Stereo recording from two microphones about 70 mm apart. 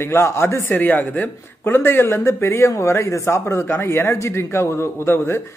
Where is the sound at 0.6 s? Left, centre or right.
Left.